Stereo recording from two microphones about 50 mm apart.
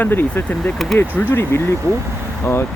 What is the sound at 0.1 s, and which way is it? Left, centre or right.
Speech, left.